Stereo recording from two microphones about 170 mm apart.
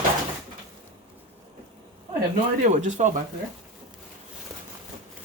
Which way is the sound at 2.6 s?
45° right (ahead or behind).